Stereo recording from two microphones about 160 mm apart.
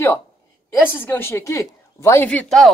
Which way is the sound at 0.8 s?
10° left (ahead or behind).